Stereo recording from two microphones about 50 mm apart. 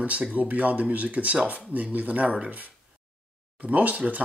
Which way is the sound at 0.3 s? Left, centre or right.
Right.